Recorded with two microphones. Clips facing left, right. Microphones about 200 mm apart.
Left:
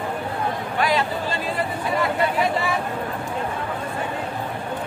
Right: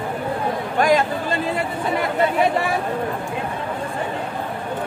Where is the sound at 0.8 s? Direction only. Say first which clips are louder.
Right 5 dB; 45° right (ahead or behind).